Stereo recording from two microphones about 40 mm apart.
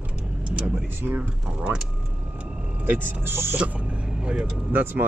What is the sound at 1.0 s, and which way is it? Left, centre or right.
Speech, right.